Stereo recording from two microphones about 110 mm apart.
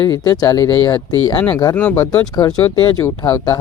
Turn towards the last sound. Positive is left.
turn(degrees=30)  # may be behind; listen again after turning